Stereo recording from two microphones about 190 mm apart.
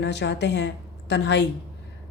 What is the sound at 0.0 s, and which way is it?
A woman's voice, 65° left (ahead or behind).